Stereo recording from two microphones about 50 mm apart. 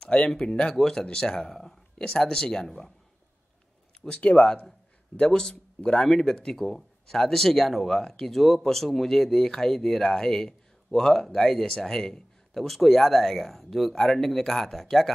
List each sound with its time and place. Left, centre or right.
0.0 s a sound: centre
0.3 s speech: centre
4.0 s speech: centre
6.0 s speech: centre